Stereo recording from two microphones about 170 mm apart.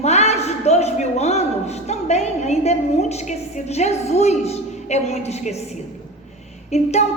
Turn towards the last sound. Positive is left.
turn(degrees=40)  # may be behind; listen again after turning